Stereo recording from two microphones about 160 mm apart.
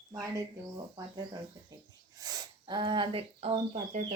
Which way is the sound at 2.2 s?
25° right (ahead or behind).